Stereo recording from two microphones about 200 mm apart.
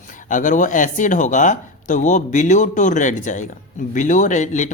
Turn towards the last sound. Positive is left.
turn(degrees=35)  # may be behind; listen again after turning